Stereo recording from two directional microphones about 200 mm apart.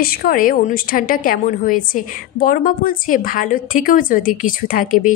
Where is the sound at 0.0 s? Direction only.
45° left (ahead or behind).